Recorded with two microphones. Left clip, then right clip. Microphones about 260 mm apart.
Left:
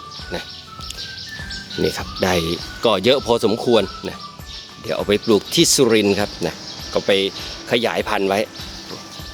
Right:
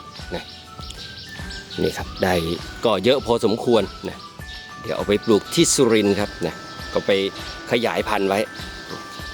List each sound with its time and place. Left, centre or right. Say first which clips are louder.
1.8 s speech: left 2 dB; centre